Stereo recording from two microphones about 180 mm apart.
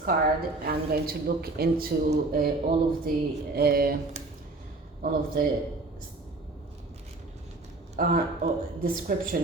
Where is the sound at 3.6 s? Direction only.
55° right (ahead or behind).